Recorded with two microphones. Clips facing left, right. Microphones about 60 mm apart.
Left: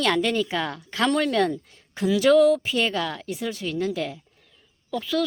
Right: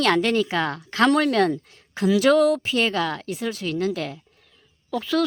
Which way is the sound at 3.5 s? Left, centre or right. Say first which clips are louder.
Right 2 dB; right.